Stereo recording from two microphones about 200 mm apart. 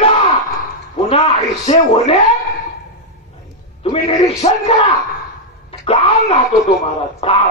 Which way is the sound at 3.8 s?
30° left (ahead or behind).